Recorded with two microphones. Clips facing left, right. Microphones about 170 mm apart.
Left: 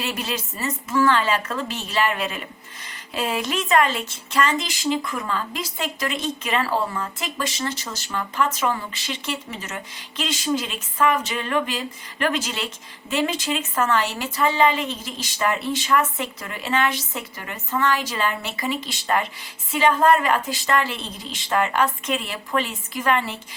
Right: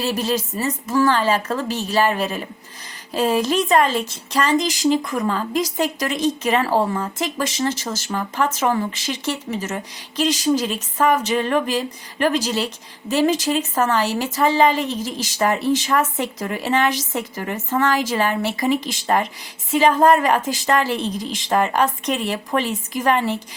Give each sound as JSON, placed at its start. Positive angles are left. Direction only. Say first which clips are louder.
{"t": 0.0, "sound": "a woman's voice", "louder": "right 7 dB", "side_deg": -35}